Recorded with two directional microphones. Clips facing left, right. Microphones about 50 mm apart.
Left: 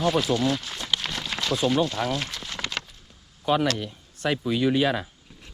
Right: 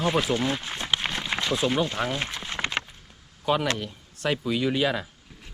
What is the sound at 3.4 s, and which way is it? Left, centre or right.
Speech, right.